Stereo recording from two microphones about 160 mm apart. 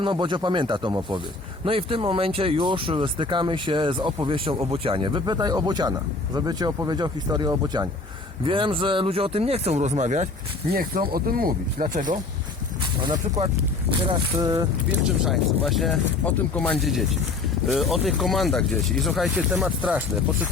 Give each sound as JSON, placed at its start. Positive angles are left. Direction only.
{"t": 0.0, "sound": "speech", "side_deg": -30}
{"t": 10.8, "sound": "speech", "side_deg": -65}
{"t": 12.8, "sound": "speech", "side_deg": -30}
{"t": 15.2, "sound": "speech", "side_deg": 0}